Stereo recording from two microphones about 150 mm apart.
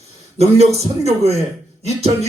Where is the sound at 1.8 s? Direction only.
45° right (ahead or behind).